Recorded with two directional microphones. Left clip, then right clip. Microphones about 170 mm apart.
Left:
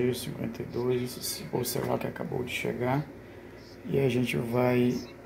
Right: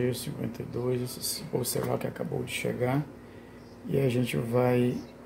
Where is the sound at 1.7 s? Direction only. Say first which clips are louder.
Even; 15° right (ahead or behind).